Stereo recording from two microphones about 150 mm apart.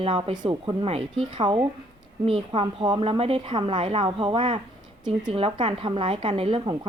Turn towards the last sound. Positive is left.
turn(degrees=-35)  # may be behind; listen again after turning